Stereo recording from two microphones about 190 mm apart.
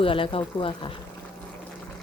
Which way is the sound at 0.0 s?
30° left (ahead or behind).